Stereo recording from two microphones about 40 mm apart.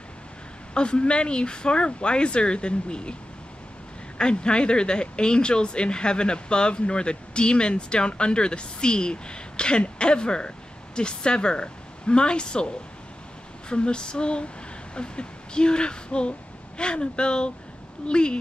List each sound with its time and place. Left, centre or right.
0.7 s speech: left
4.2 s speech: left